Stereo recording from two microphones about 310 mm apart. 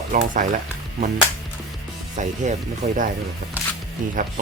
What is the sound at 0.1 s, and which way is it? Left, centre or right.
Speech, right.